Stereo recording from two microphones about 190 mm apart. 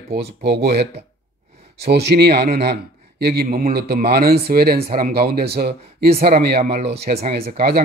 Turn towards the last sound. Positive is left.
turn(degrees=-55)  # may be behind; listen again after turning